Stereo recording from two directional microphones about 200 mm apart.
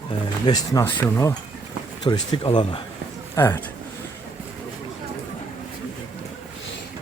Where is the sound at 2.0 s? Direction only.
25° left (ahead or behind).